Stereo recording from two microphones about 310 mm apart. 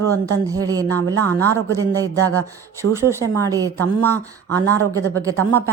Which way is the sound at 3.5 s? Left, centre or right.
Centre.